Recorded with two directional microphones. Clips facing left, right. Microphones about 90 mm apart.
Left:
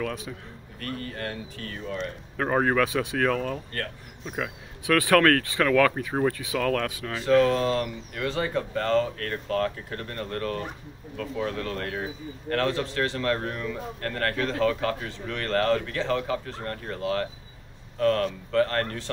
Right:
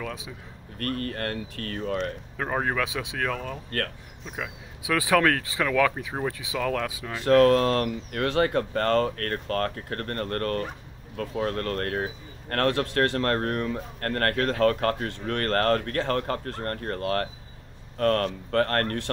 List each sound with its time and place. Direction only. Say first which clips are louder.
0.0 s speech: left 4 dB; 5° right (ahead or behind)
0.7 s speech: right 4 dB; 65° right (ahead or behind)
2.3 s speech: left 5 dB; centre (ahead or behind)
7.2 s speech: right 3 dB; 60° right (ahead or behind)
11.1 s a man's voice: right 2 dB; 50° right (ahead or behind)